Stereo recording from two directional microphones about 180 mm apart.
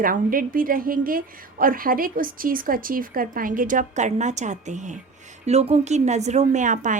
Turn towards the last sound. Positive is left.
turn(degrees=-45)  # may be behind; listen again after turning